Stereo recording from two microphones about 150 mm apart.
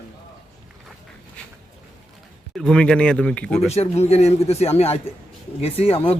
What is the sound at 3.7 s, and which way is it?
Speech, 45° left (ahead or behind).